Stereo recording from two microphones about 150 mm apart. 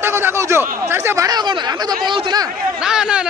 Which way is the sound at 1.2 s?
30° right (ahead or behind).